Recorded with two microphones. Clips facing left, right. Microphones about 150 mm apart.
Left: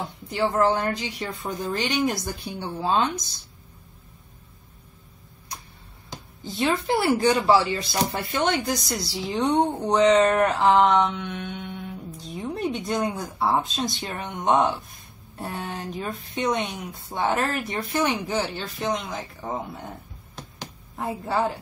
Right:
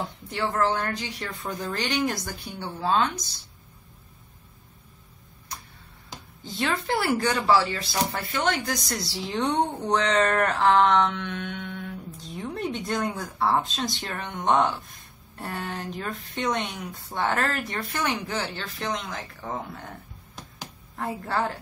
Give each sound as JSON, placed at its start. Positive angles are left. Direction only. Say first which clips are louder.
{"t": 0.3, "sound": "speech", "louder": "left 4 dB", "side_deg": 10}
{"t": 6.6, "sound": "speech", "louder": "left 4 dB", "side_deg": 15}
{"t": 20.9, "sound": "speech", "louder": "left 2 dB", "side_deg": 10}